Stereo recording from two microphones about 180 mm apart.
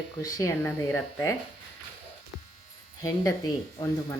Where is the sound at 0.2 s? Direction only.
20° left (ahead or behind).